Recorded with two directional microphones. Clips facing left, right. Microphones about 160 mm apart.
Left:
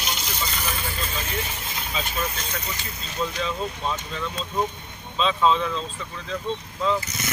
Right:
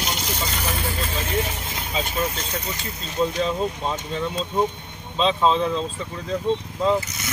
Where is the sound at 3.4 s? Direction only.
30° right (ahead or behind).